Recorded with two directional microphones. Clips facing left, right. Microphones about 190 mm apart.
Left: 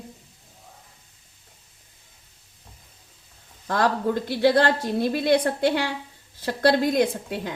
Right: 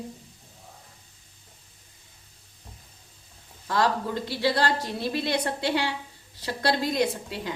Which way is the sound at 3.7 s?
50° left (ahead or behind).